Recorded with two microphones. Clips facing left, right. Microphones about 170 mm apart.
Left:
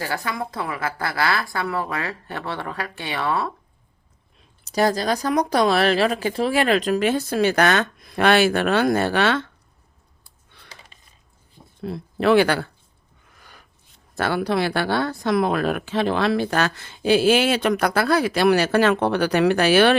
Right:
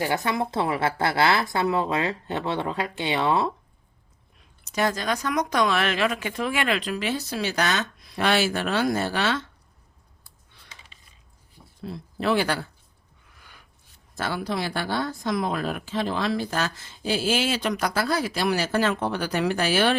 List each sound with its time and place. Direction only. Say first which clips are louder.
0.0 s a woman's voice: right 2 dB; 20° right (ahead or behind)
4.6 s speech: left 5 dB; 35° left (ahead or behind); by 9.5 s 60° left (ahead or behind)
10.9 s dishes: left 2 dB; 45° left (ahead or behind)
11.8 s speech: left 6 dB; 60° left (ahead or behind)
13.3 s a sound: left 3 dB; 45° left (ahead or behind)
14.2 s speech: left 6 dB; 65° left (ahead or behind)